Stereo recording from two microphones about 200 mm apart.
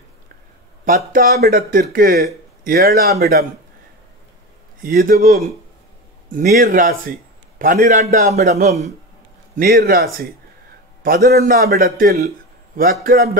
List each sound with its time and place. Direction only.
0.8 s speech: 45° right (ahead or behind)
4.8 s a man's voice: 45° right (ahead or behind)
8.6 s speech: 35° right (ahead or behind)
9.6 s speech: 50° right (ahead or behind)